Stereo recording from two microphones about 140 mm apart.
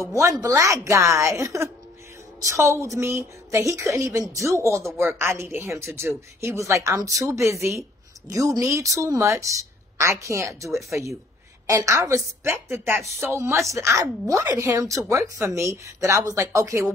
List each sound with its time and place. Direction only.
0.1 s a woman's voice: 20° right (ahead or behind)